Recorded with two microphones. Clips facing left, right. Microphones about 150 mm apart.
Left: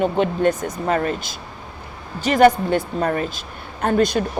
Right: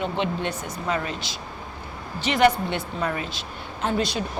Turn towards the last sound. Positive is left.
turn(degrees=50)  # may be behind; listen again after turning